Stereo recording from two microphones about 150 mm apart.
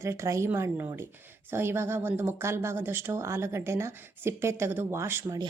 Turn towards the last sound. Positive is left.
turn(degrees=-15)  # may be behind; listen again after turning